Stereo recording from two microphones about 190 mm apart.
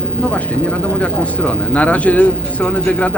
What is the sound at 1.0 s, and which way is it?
Speech, 5° left (ahead or behind).